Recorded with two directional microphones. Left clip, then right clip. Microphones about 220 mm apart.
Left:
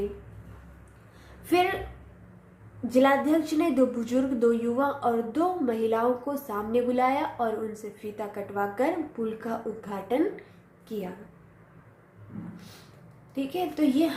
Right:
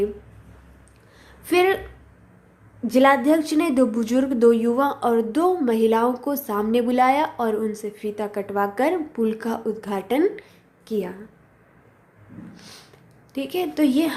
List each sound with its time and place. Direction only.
1.5 s speech: 45° right (ahead or behind)
2.8 s a woman's voice: 50° right (ahead or behind)
13.3 s a woman's voice: 50° right (ahead or behind)